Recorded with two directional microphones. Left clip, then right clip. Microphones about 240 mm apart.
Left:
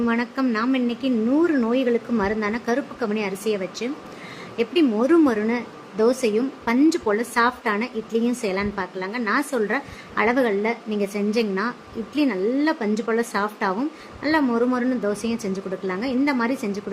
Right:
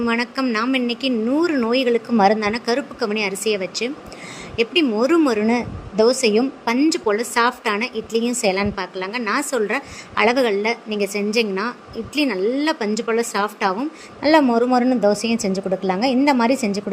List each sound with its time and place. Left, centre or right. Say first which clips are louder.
0.0 s a woman's voice: right 2 dB; right